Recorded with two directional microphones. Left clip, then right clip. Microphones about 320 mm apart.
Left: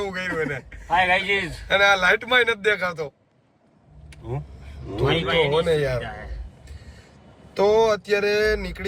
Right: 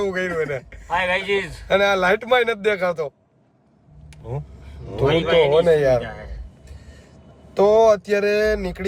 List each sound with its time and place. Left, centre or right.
0.0 s speech: centre
0.9 s a man's voice: centre
1.6 s speech: centre
4.9 s speech: centre
7.5 s speech: centre